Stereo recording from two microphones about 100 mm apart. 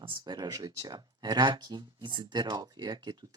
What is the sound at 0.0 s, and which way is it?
Speech, 55° right (ahead or behind).